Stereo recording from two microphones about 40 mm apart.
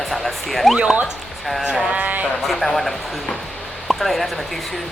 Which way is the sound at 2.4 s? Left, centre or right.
Centre.